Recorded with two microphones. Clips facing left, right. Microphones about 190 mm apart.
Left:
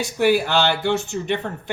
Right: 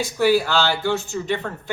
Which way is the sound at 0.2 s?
20° left (ahead or behind).